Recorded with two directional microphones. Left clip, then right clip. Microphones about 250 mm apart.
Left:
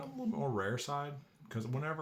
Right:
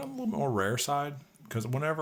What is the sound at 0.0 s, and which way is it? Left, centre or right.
Speech, right.